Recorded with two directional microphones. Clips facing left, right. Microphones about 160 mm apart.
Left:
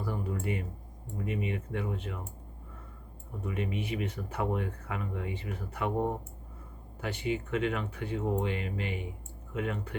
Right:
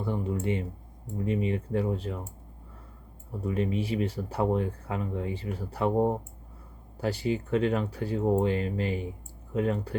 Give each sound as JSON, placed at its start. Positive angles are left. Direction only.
{"t": 0.0, "sound": "speech", "side_deg": -25}
{"t": 3.4, "sound": "speech", "side_deg": -35}